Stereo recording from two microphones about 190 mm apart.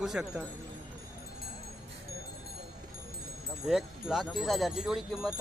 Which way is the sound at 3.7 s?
Centre (ahead or behind).